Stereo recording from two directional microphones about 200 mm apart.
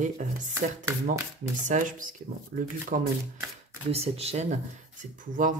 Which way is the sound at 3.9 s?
30° right (ahead or behind).